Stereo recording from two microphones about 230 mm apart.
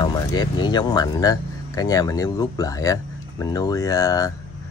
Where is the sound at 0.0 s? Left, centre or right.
Centre.